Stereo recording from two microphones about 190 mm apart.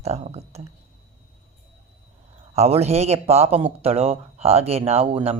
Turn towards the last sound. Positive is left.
turn(degrees=-30)  # may be behind; listen again after turning